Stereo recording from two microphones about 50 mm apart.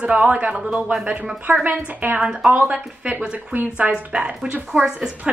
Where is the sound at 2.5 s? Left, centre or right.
Right.